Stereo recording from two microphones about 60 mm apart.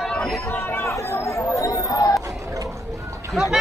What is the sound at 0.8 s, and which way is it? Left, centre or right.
Speech, left.